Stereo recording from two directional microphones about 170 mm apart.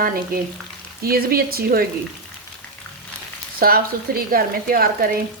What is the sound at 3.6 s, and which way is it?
Frying, 60° right (ahead or behind).